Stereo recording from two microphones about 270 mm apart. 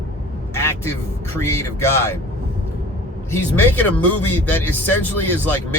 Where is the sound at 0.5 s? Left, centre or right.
Centre.